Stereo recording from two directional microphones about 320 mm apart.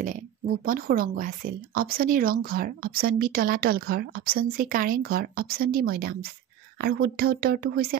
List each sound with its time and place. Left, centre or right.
0.7 s speech: right